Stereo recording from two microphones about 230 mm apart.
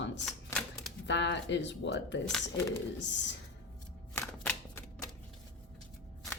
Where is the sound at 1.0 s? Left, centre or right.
Left.